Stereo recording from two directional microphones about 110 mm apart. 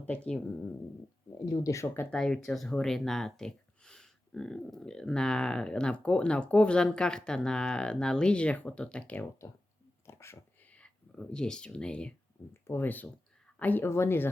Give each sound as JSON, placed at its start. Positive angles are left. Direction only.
{"t": 0.0, "sound": "speech", "side_deg": 15}
{"t": 1.5, "sound": "speech", "side_deg": 30}
{"t": 2.0, "sound": "speech", "side_deg": 5}
{"t": 10.1, "sound": "whispering", "side_deg": 25}
{"t": 10.7, "sound": "speech", "side_deg": 10}